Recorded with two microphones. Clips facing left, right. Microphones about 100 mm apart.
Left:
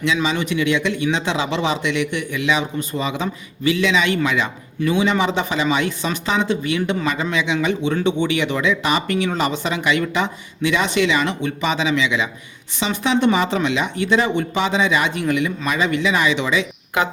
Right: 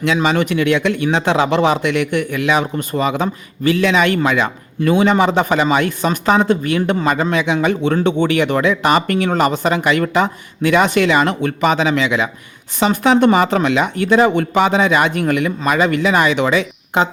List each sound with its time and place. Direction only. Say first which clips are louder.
0.0 s a man's voice: right 5 dB; 55° right (ahead or behind)
16.9 s speech: right 4 dB; 30° right (ahead or behind)